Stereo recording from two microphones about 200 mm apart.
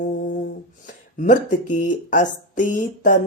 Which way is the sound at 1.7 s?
40° left (ahead or behind).